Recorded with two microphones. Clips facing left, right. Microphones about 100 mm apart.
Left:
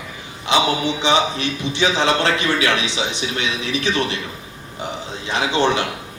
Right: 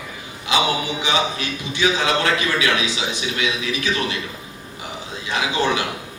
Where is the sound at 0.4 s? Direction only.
25° left (ahead or behind).